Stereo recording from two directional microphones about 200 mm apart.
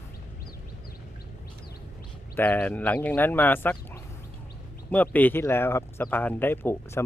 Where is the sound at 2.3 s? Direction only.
10° left (ahead or behind).